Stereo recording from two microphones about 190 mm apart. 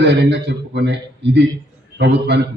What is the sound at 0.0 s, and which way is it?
A man's voice, 65° right (ahead or behind).